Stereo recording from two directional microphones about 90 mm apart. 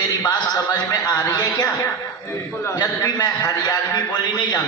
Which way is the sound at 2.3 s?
30° left (ahead or behind).